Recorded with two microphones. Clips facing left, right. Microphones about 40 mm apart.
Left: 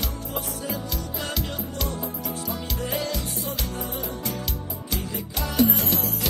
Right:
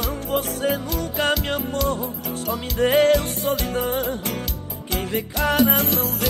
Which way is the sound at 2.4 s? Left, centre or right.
Right.